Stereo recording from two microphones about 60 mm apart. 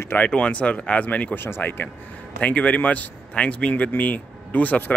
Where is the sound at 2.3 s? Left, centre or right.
Left.